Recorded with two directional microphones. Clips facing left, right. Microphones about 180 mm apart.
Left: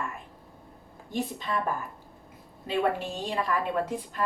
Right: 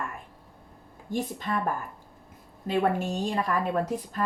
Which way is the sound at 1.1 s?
45° right (ahead or behind).